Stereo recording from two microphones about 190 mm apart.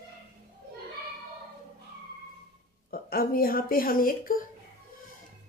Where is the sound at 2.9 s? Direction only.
50° left (ahead or behind).